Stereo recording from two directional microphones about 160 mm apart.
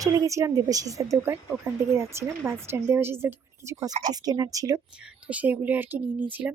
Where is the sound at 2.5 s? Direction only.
15° right (ahead or behind).